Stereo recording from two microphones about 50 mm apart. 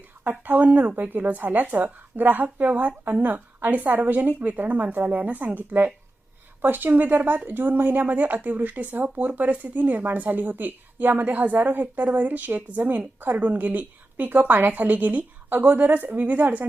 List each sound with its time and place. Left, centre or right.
0.3 s speech: right